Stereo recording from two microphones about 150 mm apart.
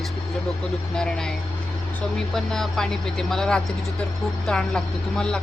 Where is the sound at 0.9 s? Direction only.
5° left (ahead or behind).